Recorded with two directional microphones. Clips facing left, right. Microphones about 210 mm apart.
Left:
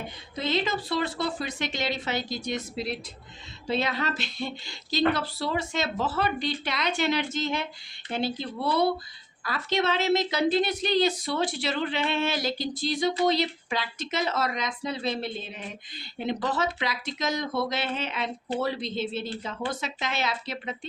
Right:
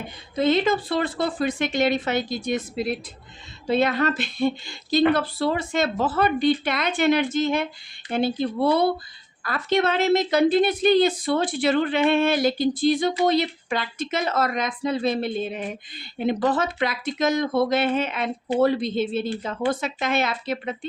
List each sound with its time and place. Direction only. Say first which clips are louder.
0.3 s a woman's voice: right 8 dB; 50° right (ahead or behind)